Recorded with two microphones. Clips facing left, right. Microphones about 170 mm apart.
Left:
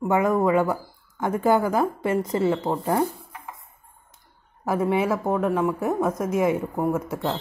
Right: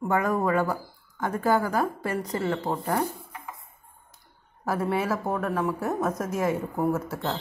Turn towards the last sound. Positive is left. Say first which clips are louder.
# left 2 dB
turn(degrees=15)  # may be behind; listen again after turning